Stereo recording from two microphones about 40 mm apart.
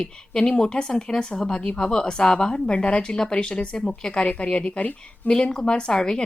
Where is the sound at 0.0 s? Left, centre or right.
Left.